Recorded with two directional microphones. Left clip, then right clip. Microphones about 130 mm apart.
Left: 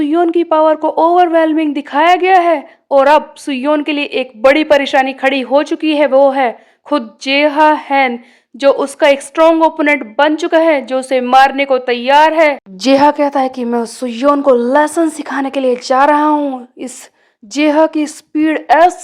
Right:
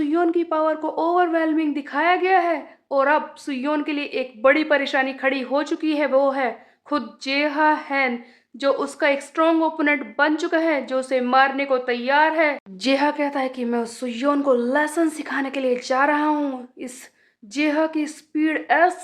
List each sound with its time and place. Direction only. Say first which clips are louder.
0.0 s speech: left 8 dB; 45° left (ahead or behind)
16.3 s a woman's voice: left 9 dB; 25° left (ahead or behind)
16.8 s speech: left 8 dB; 45° left (ahead or behind)